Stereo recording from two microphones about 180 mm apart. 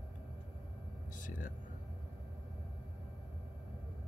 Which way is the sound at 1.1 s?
45° left (ahead or behind).